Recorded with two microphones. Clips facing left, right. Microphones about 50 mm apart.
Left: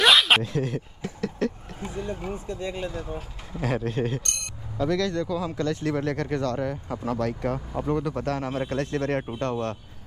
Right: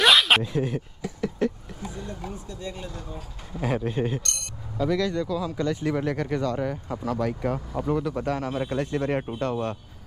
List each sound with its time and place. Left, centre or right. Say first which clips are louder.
0.0 s a sound: even; centre
0.4 s speech: right 1 dB; centre
1.4 s a sound: right 1 dB; centre
1.8 s speech: left 5 dB; left
3.6 s speech: even; centre
5.2 s speech: even; centre
5.6 s speech: right 1 dB; centre
7.5 s speech: even; centre
8.6 s speech: right 1 dB; centre